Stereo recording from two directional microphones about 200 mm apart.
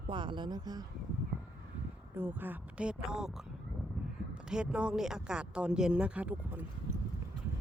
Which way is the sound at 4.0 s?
Centre (ahead or behind).